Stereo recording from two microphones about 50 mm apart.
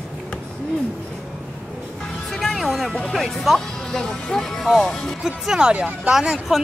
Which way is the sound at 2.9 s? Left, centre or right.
Centre.